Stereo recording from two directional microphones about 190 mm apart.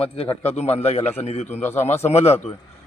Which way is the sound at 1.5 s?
10° left (ahead or behind).